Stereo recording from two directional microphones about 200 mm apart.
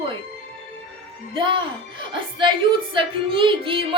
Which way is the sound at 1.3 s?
25° right (ahead or behind).